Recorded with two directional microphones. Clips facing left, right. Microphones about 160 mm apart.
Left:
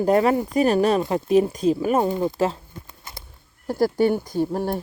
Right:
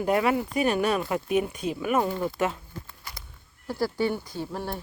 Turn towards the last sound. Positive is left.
turn(degrees=45)  # may be behind; listen again after turning